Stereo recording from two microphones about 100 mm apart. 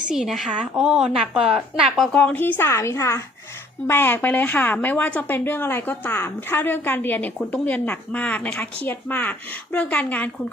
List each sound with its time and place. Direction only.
0.1 s a woman's voice: 5° right (ahead or behind)
2.1 s a woman's voice: 15° left (ahead or behind)